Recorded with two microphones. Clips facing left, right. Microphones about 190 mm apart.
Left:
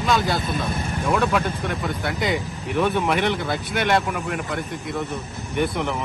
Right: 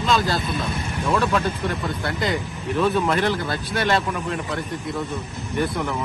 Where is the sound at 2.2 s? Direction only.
20° left (ahead or behind).